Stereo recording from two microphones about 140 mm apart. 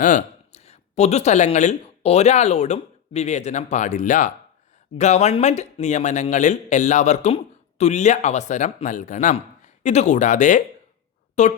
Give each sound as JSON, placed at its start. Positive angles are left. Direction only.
{"t": 0.0, "sound": "speech", "side_deg": 60}
{"t": 4.9, "sound": "a man's voice", "side_deg": 55}